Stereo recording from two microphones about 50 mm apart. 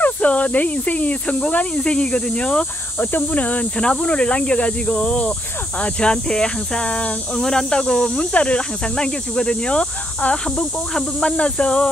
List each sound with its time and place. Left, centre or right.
0.0 s speech: left
3.0 s speech: left
3.8 s speech: centre